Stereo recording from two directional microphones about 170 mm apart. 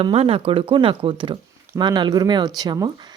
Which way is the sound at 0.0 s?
35° right (ahead or behind).